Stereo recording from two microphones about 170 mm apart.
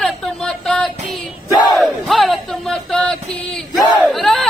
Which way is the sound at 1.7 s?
Centre (ahead or behind).